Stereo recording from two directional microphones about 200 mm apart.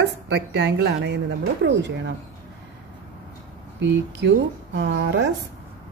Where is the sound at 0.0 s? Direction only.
60° right (ahead or behind).